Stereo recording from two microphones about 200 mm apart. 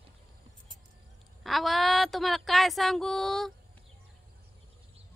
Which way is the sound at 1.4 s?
Centre (ahead or behind).